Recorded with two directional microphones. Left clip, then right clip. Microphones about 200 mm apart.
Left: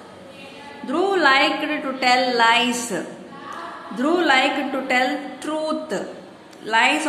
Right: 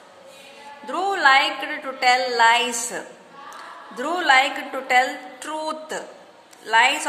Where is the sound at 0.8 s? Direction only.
35° right (ahead or behind).